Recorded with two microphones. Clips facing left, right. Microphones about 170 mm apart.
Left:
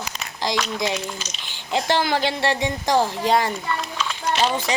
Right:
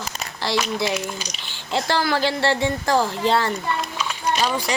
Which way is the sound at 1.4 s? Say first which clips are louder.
Left 2 dB; 15° left (ahead or behind).